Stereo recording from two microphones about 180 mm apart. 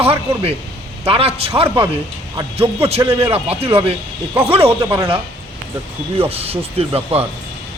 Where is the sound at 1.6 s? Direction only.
10° right (ahead or behind).